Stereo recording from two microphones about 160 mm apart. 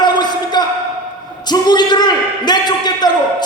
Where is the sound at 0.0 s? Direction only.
25° left (ahead or behind).